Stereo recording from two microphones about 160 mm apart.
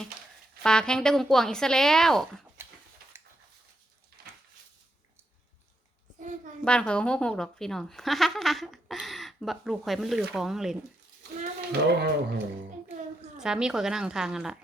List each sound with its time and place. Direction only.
0.6 s speech: 5° left (ahead or behind)
6.1 s child singing: 55° right (ahead or behind)
6.7 s speech: 5° left (ahead or behind)
11.7 s speech: 90° right
13.4 s speech: 5° right (ahead or behind)